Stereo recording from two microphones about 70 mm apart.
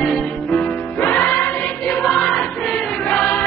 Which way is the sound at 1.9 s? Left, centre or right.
Centre.